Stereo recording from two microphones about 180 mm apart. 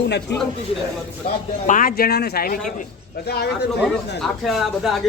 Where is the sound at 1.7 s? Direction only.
50° left (ahead or behind).